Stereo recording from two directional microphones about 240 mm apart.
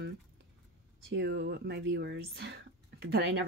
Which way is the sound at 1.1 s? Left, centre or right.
Right.